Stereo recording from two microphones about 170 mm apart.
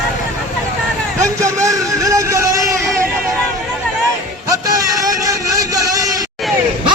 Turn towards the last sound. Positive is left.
turn(degrees=-20)  # may be behind; listen again after turning